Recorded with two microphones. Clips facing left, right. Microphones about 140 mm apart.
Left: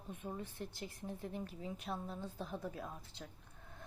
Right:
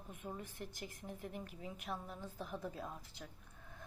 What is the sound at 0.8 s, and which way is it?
Speech, 15° right (ahead or behind).